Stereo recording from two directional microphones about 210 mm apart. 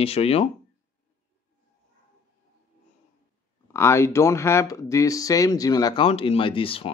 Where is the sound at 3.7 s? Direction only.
15° left (ahead or behind).